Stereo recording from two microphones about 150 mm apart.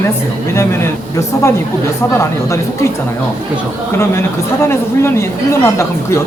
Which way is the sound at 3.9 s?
15° left (ahead or behind).